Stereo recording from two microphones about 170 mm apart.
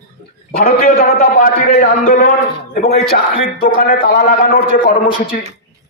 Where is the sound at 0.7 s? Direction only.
50° left (ahead or behind).